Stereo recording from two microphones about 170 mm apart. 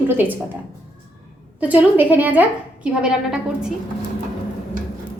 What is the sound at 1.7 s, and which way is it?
A woman's voice, 10° right (ahead or behind).